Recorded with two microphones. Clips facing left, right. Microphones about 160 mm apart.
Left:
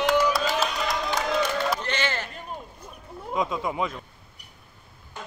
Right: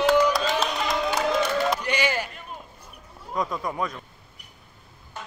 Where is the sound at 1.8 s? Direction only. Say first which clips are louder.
Right 3 dB; 10° right (ahead or behind).